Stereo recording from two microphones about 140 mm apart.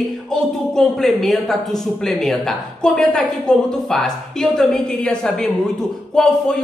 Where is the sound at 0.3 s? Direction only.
5° left (ahead or behind).